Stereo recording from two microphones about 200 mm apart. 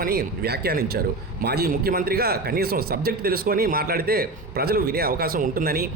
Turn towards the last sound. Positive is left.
turn(degrees=-50)  # may be behind; listen again after turning